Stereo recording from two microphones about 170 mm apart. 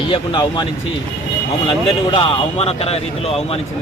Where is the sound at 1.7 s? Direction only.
30° left (ahead or behind).